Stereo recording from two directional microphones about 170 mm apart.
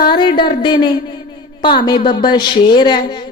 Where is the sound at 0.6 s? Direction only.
30° left (ahead or behind).